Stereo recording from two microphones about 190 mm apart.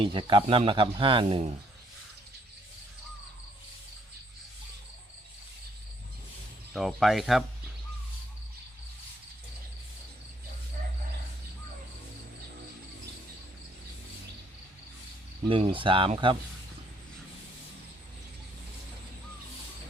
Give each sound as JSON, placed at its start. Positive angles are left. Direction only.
{"t": 0.0, "sound": "speech", "side_deg": -25}
{"t": 6.7, "sound": "speech", "side_deg": 0}
{"t": 15.4, "sound": "speech", "side_deg": -25}